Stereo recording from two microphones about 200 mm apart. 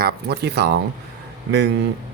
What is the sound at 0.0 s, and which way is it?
Speech, 55° right (ahead or behind).